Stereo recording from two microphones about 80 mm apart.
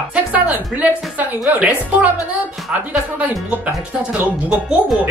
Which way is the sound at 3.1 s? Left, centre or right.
Centre.